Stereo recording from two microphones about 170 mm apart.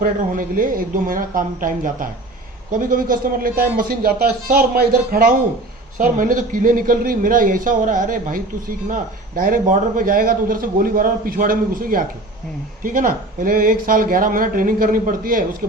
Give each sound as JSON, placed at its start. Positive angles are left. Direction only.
{"t": 0.0, "sound": "a man's voice", "side_deg": -55}